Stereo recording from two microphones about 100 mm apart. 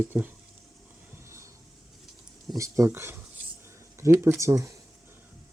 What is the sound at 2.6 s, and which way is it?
Speech, 30° right (ahead or behind).